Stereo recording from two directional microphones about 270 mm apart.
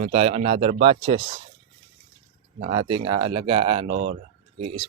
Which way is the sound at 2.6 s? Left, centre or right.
Right.